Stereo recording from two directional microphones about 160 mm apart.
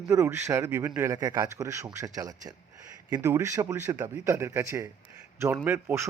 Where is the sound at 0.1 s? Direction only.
15° right (ahead or behind).